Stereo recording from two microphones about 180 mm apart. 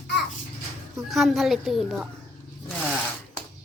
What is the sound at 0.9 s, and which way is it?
A woman's voice, centre (ahead or behind).